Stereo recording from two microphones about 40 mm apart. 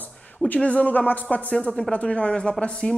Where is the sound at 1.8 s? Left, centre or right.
Left.